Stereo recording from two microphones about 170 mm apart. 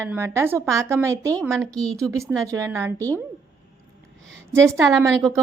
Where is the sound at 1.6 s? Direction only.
5° left (ahead or behind).